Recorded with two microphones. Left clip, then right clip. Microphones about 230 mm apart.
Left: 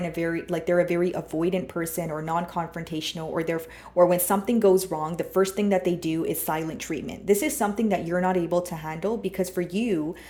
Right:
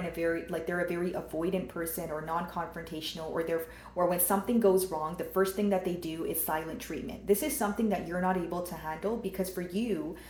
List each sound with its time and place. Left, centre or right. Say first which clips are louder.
0.2 s speech: left 3 dB; left